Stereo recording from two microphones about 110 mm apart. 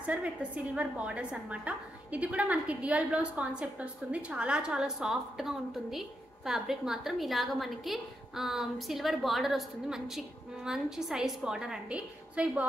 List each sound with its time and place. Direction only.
0.0 s a woman's voice: 10° right (ahead or behind)